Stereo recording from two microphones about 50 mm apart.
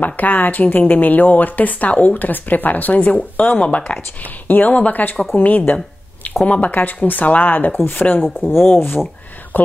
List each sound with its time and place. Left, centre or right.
0.0 s speech: left
8.4 s speech: left